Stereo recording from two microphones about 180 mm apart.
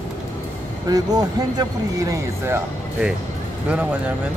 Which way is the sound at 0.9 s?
20° right (ahead or behind).